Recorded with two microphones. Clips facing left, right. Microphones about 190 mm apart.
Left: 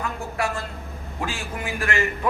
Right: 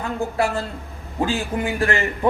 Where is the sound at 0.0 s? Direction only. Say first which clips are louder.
Right 5 dB; 30° right (ahead or behind).